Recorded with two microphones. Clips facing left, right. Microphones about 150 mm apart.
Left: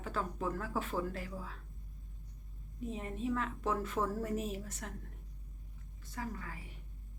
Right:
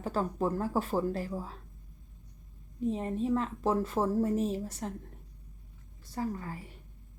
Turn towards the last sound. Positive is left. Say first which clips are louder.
# right 8 dB
turn(degrees=-35)  # may be behind; listen again after turning